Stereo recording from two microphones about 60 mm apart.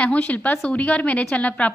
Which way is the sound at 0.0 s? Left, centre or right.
Left.